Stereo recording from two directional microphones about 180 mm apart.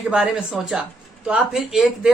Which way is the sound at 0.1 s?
5° right (ahead or behind).